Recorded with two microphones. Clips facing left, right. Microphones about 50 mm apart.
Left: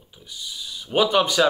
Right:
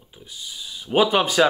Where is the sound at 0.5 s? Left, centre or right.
Centre.